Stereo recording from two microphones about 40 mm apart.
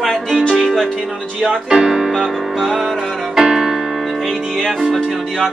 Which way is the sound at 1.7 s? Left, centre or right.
Centre.